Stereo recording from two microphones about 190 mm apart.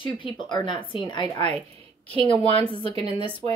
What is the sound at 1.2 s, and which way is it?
A woman's voice, 30° right (ahead or behind).